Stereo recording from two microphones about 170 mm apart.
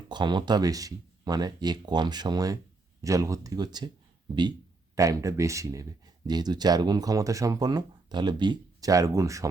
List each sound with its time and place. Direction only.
0.1 s speech: 25° right (ahead or behind)
4.9 s speech: 20° right (ahead or behind)